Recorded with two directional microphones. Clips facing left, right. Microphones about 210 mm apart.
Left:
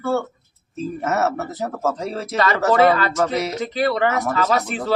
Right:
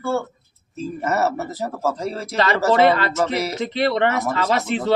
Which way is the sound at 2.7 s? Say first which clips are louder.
Left 1 dB; 25° right (ahead or behind).